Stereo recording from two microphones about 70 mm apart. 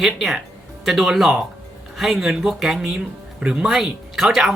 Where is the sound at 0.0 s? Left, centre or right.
Centre.